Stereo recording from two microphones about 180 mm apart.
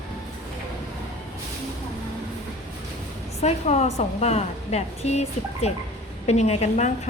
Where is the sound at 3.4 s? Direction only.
35° left (ahead or behind).